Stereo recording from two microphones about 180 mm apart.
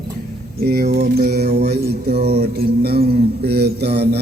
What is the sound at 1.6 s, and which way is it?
Music, 65° right (ahead or behind).